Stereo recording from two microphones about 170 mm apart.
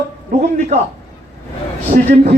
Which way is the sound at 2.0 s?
40° right (ahead or behind).